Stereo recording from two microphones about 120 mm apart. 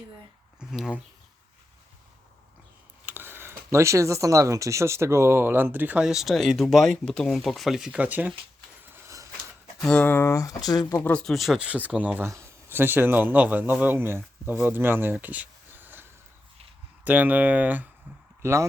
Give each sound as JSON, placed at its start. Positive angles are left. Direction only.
{"t": 0.7, "sound": "speech", "side_deg": -5}
{"t": 3.1, "sound": "speech", "side_deg": -20}
{"t": 8.8, "sound": "a sound", "side_deg": -20}
{"t": 9.7, "sound": "speech", "side_deg": 5}
{"t": 10.0, "sound": "speech", "side_deg": 15}
{"t": 11.0, "sound": "speech", "side_deg": 10}
{"t": 12.2, "sound": "speech", "side_deg": -25}